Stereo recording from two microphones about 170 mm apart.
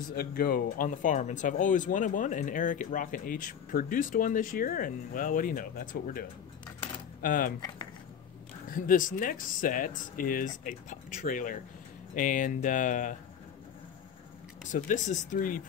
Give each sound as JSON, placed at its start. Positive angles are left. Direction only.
{"t": 0.1, "sound": "speech", "side_deg": 60}
{"t": 8.6, "sound": "speech", "side_deg": 55}
{"t": 14.7, "sound": "speech", "side_deg": 45}